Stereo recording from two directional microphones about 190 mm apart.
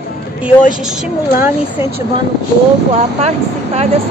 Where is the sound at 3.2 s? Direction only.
35° right (ahead or behind).